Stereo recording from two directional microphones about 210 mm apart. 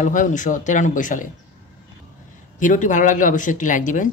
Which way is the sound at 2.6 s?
35° left (ahead or behind).